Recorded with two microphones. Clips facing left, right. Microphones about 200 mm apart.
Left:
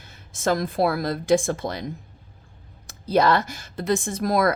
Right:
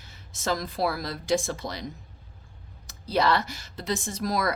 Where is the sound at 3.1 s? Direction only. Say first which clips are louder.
Left 5 dB; 50° left (ahead or behind).